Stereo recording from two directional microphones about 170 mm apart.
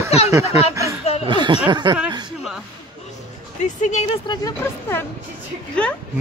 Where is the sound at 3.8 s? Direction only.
40° left (ahead or behind).